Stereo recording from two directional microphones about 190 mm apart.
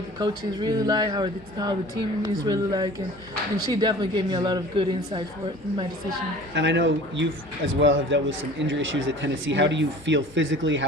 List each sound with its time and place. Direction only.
0.2 s speech: 25° right (ahead or behind)
6.5 s speech: 70° right (ahead or behind)